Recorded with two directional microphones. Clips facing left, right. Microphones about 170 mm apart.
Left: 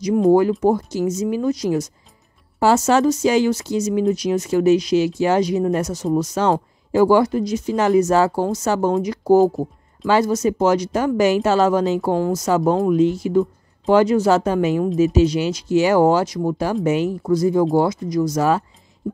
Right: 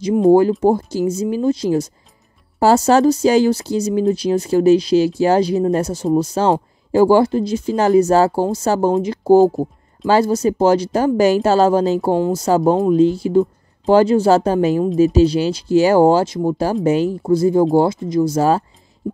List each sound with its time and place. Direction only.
0.3 s speech: 30° right (ahead or behind)